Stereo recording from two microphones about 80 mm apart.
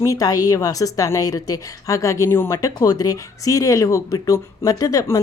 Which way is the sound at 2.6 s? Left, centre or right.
Left.